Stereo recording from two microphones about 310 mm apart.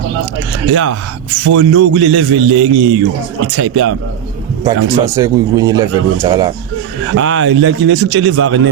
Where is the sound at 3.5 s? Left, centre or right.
Right.